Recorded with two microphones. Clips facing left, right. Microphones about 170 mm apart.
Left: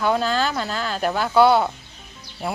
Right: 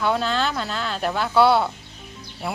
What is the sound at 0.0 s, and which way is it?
Speech, centre (ahead or behind).